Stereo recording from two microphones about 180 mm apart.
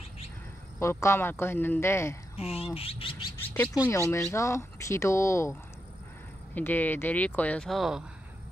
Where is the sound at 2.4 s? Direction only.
35° left (ahead or behind).